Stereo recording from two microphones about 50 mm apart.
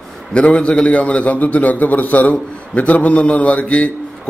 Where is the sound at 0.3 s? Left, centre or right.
Left.